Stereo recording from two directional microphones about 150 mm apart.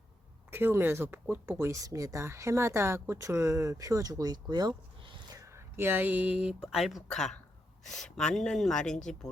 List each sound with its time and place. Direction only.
0.5 s speech: 15° right (ahead or behind); by 9.0 s 5° left (ahead or behind)